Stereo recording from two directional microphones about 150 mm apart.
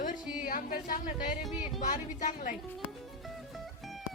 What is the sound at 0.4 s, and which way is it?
Speech, 70° left (ahead or behind).